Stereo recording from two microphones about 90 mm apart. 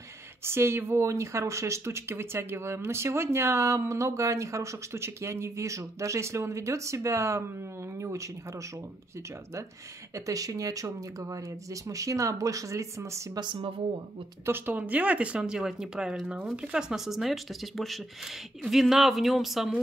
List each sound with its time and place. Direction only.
0.4 s speech: 30° right (ahead or behind)
10.1 s speech: 40° right (ahead or behind)
13.4 s speech: 65° right (ahead or behind)
14.4 s speech: 25° right (ahead or behind); by 19.7 s centre (ahead or behind)